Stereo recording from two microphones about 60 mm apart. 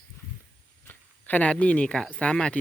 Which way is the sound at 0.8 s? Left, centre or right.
Left.